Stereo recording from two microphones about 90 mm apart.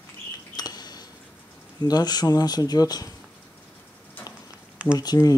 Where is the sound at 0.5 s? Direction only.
50° left (ahead or behind).